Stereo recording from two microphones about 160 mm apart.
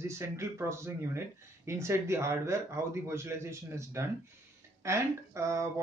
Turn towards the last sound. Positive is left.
turn(degrees=-15)  # may be behind; listen again after turning